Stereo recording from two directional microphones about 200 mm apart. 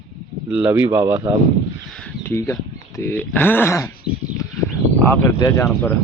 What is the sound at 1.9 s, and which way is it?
Speech, 10° left (ahead or behind).